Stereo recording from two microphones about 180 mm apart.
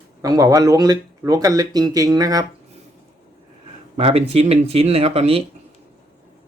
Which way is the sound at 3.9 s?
35° right (ahead or behind).